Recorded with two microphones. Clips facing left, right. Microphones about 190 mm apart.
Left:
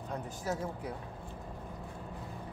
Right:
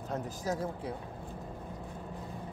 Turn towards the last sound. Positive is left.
turn(degrees=-35)  # may be behind; listen again after turning